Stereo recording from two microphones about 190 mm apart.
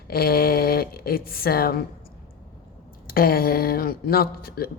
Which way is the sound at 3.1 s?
50° left (ahead or behind).